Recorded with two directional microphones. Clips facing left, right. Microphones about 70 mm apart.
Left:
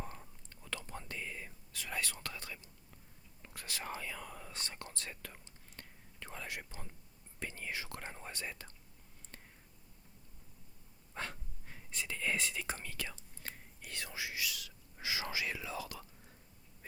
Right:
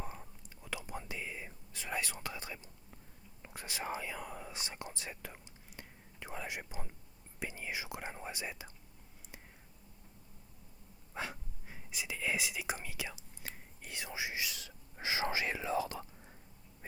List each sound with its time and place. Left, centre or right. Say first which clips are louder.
0.0 s whispering: right 1 dB; centre
7.3 s speech: right 1 dB; centre
11.1 s whispering: right 2 dB; centre
13.9 s speech: right 3 dB; centre